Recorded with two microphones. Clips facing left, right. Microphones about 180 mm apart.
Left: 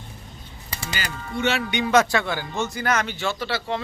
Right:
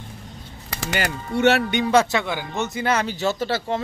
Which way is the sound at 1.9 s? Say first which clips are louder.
Left 1 dB; 25° right (ahead or behind).